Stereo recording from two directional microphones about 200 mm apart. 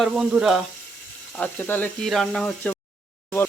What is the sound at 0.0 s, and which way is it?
Speech, centre (ahead or behind).